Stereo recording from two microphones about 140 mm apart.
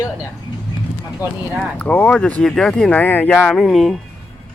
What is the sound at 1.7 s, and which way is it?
Speech, 10° left (ahead or behind).